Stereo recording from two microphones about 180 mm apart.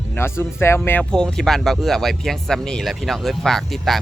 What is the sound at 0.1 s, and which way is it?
Speech, 15° left (ahead or behind).